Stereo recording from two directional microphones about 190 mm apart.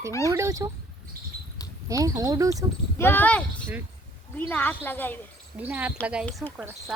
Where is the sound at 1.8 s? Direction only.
15° right (ahead or behind).